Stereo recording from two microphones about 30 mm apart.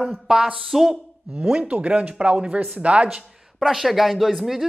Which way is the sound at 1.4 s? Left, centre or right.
Right.